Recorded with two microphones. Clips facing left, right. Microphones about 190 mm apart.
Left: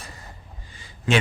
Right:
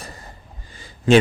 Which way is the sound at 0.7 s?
40° right (ahead or behind).